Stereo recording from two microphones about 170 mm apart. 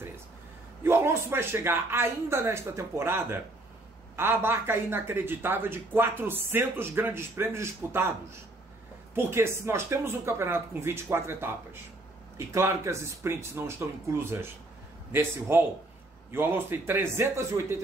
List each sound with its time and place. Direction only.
0.8 s speech: 15° right (ahead or behind)
9.1 s speech: 15° right (ahead or behind)